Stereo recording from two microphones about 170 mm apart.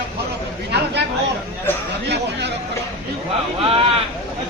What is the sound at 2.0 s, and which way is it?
Hubbub, 80° right.